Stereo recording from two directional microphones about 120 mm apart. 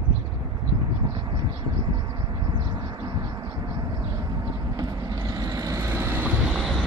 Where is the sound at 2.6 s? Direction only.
40° right (ahead or behind).